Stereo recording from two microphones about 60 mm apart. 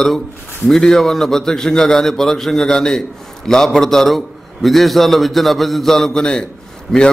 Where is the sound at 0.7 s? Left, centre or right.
Centre.